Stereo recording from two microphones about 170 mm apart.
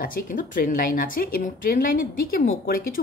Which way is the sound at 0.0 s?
55° left (ahead or behind).